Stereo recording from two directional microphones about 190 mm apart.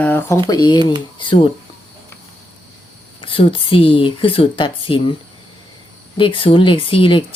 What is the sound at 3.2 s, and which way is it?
Speech, 30° left (ahead or behind).